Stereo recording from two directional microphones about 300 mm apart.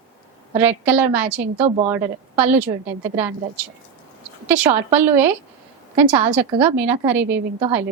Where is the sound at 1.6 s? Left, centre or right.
Right.